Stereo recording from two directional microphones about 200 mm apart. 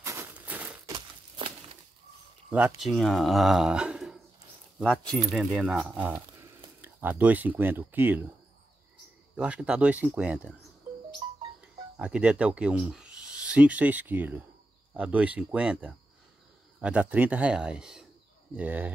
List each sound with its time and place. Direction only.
0.0 s typewriter: 15° right (ahead or behind)
0.9 s a sound: 25° right (ahead or behind)
2.5 s speech: 5° right (ahead or behind)
9.4 s speech: 5° right (ahead or behind)
12.0 s speech: 5° right (ahead or behind)